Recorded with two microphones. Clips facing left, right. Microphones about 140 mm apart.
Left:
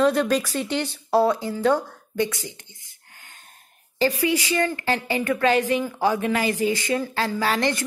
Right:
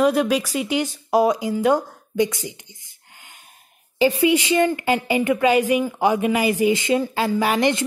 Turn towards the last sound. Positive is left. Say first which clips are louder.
# right 4 dB
turn(degrees=-15)  # may be behind; listen again after turning